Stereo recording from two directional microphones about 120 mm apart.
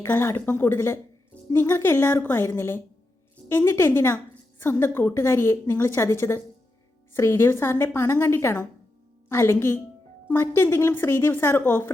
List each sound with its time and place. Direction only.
0.0 s a woman's voice: 20° left (ahead or behind)